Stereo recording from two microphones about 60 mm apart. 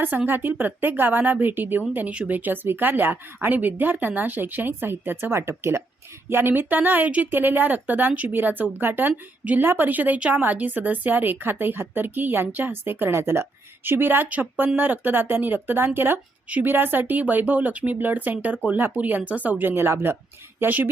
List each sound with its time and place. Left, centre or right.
0.3 s a woman's voice: right
13.1 s speech: right
19.7 s speech: right